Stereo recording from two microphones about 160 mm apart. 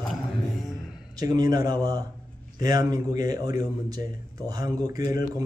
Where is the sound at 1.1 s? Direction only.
25° right (ahead or behind).